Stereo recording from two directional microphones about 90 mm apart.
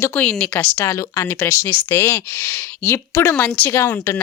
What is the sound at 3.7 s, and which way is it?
Speech, 30° left (ahead or behind).